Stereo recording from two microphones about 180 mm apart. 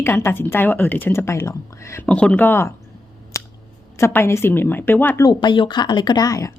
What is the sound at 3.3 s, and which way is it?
Scissors, 15° left (ahead or behind).